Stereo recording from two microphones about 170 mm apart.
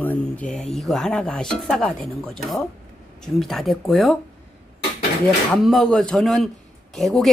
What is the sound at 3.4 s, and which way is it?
Speech, centre (ahead or behind).